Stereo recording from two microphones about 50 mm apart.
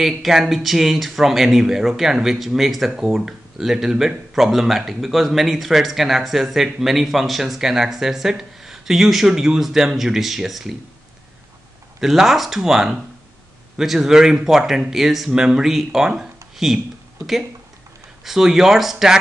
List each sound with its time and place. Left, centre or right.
0.0 s speech: centre
12.0 s speech: centre
18.2 s speech: centre